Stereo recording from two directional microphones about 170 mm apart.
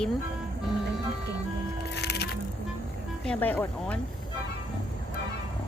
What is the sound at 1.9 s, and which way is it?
Music, 75° left (ahead or behind).